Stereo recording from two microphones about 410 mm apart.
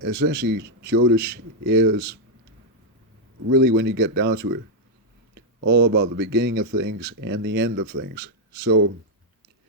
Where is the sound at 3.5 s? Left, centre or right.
Right.